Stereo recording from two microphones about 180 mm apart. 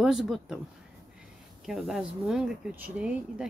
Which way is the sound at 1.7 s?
Centre (ahead or behind).